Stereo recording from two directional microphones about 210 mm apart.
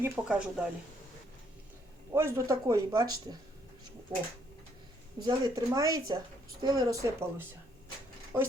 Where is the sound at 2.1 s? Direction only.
15° right (ahead or behind).